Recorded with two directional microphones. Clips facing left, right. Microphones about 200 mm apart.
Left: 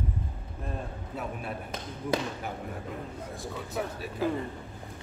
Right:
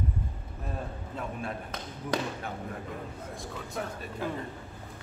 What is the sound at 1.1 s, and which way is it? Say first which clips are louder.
Speech: left 1 dB; 10° left (ahead or behind).